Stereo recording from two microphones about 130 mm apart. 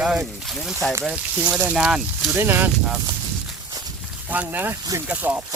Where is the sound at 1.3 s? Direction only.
10° right (ahead or behind).